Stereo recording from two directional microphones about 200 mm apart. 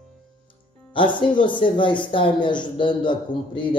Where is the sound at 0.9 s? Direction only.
25° left (ahead or behind).